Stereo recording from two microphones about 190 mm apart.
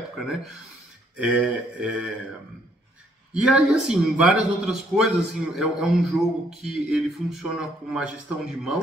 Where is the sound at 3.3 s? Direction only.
5° right (ahead or behind).